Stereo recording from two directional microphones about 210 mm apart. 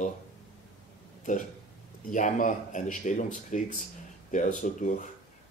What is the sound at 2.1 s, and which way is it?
Speech, 35° left (ahead or behind).